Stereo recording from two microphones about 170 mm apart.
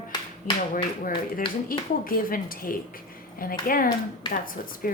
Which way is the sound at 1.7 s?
55° left (ahead or behind).